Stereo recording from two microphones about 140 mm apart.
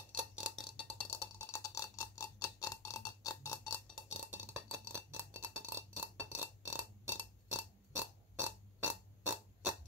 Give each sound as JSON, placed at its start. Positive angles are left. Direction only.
{"t": 0.4, "sound": "burping", "side_deg": 0}
{"t": 0.9, "sound": "clock", "side_deg": 20}
{"t": 4.3, "sound": "a sound", "side_deg": -15}